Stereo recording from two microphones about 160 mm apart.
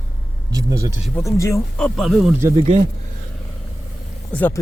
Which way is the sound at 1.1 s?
20° left (ahead or behind).